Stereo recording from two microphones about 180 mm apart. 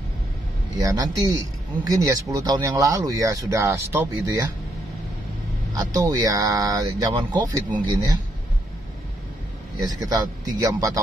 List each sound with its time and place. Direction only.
0.7 s speech: 20° right (ahead or behind)
5.8 s speech: 20° right (ahead or behind)
9.8 s speech: 20° right (ahead or behind)